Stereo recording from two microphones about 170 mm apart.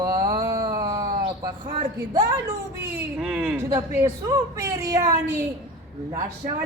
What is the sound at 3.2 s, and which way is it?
Speech, 5° right (ahead or behind).